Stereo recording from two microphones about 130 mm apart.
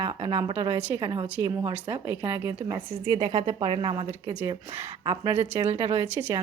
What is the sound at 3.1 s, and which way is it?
Speech, 30° right (ahead or behind).